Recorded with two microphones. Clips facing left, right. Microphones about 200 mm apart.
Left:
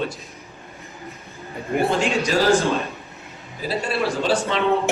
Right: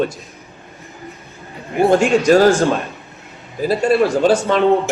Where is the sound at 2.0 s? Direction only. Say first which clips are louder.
Right 9 dB; 50° right (ahead or behind).